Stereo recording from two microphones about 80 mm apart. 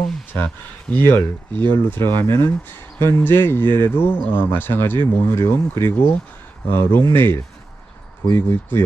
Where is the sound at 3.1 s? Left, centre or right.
Left.